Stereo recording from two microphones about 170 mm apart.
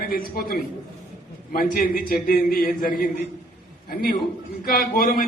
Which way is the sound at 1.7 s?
55° left (ahead or behind).